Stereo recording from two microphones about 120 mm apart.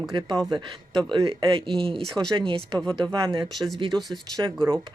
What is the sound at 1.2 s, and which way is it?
Speech, 50° right (ahead or behind).